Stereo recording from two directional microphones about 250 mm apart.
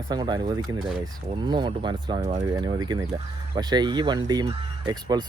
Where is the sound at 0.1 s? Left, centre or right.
Centre.